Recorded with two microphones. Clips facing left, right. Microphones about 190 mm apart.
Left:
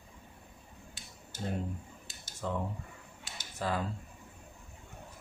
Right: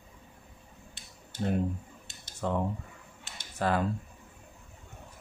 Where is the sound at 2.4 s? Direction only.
65° right (ahead or behind).